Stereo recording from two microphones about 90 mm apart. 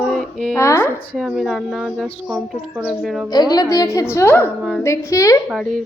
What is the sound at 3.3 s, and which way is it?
Speech, 45° left (ahead or behind).